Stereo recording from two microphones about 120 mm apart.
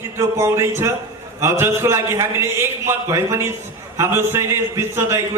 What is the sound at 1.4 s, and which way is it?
A man's voice, 20° right (ahead or behind).